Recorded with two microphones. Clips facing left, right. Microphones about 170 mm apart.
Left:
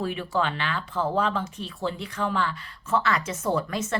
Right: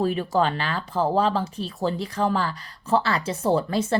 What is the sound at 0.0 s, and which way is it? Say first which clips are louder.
Speech: right 5 dB; 40° right (ahead or behind).